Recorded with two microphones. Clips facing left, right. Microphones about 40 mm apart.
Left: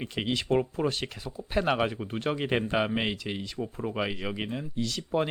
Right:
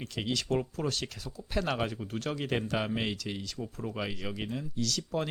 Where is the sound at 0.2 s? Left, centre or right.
Left.